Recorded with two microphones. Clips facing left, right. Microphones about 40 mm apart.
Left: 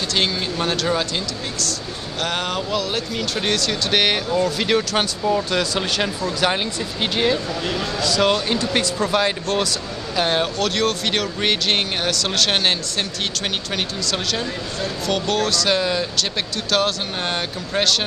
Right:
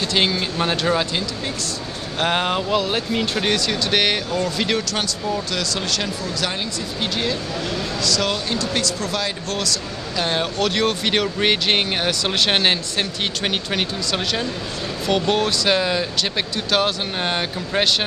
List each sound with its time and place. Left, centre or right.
0.1 s speech: centre
2.1 s speech: right
3.3 s speech: centre
10.6 s speech: centre